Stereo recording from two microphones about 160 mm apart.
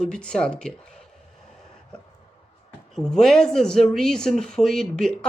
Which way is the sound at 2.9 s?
5° left (ahead or behind).